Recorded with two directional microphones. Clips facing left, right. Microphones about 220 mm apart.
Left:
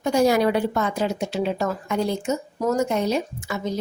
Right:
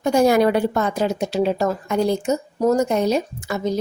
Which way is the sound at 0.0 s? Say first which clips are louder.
Right 3 dB; 50° right (ahead or behind).